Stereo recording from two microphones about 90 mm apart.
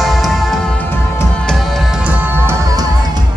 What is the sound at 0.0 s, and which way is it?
Music, centre (ahead or behind).